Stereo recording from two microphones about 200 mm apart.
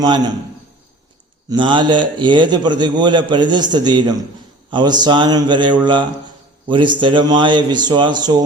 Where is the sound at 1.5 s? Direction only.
25° right (ahead or behind).